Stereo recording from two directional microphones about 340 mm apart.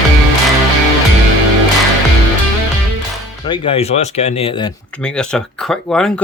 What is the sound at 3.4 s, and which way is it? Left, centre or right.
Speech, centre.